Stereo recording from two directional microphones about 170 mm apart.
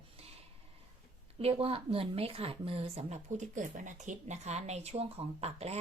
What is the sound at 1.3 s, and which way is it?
Speech, 35° right (ahead or behind).